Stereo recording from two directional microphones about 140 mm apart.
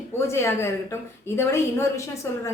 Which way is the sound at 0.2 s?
20° left (ahead or behind).